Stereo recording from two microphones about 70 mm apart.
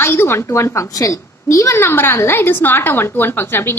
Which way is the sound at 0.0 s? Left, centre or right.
Left.